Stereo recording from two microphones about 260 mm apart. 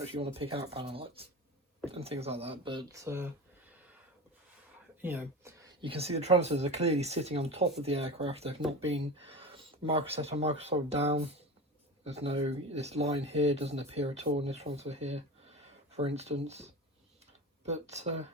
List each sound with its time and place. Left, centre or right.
0.0 s speech: right
5.0 s speech: centre; by 18.3 s right